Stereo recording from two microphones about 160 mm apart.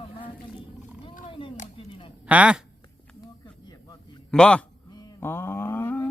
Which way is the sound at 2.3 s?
5° right (ahead or behind).